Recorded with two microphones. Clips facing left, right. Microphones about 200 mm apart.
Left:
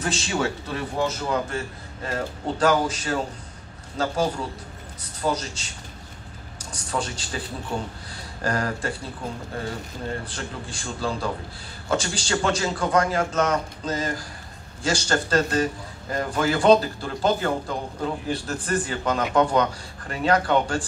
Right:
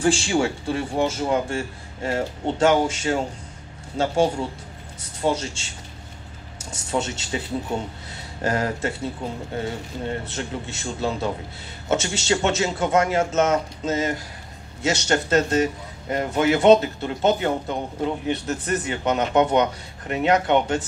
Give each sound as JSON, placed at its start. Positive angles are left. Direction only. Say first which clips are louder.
{"t": 0.0, "sound": "a man's voice", "louder": "right 5 dB", "side_deg": -30}